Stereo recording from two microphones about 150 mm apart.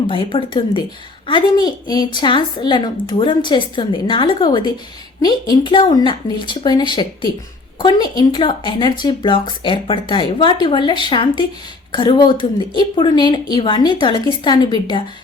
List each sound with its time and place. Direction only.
0.1 s a woman's voice: 35° left (ahead or behind)